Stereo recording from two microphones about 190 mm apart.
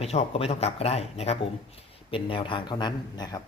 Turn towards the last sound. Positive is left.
turn(degrees=20)  # may be behind; listen again after turning